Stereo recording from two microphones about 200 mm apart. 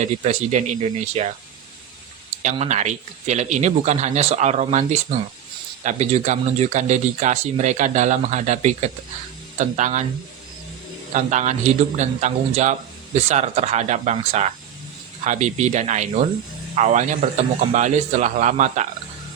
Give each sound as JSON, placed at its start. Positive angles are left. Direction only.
{"t": 0.0, "sound": "speech", "side_deg": -35}
{"t": 2.4, "sound": "speech", "side_deg": -35}
{"t": 11.1, "sound": "speech", "side_deg": -35}